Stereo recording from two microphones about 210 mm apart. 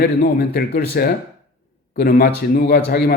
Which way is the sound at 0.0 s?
45° left (ahead or behind).